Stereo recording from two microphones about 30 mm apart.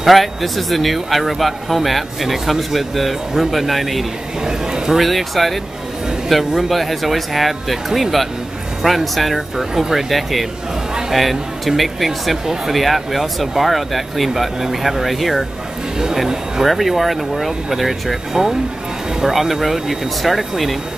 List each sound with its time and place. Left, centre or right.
0.0 s speech: centre
4.5 s speech: right
4.9 s speech: centre
6.2 s a man's voice: centre
16.6 s speech: centre
18.3 s speech: centre
19.2 s speech: centre